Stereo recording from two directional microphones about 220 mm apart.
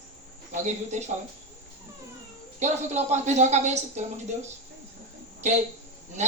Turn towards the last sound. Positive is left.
turn(degrees=-30)  # may be behind; listen again after turning